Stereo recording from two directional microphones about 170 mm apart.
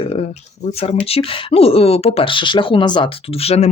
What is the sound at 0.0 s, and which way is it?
Speech, 35° left (ahead or behind).